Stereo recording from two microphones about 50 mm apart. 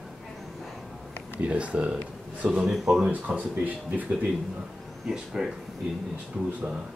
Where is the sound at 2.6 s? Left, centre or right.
Centre.